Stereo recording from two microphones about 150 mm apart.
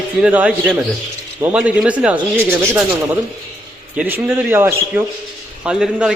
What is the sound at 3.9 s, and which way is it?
A man's voice, 10° right (ahead or behind).